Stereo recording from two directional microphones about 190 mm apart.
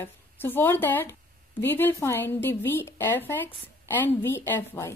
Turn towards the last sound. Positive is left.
turn(degrees=10)  # may be behind; listen again after turning